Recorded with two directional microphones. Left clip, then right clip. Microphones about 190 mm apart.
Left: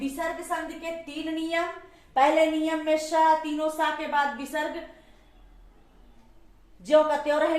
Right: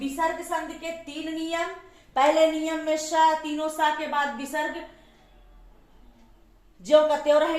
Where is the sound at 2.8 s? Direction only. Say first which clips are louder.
Right 1 dB; 25° right (ahead or behind).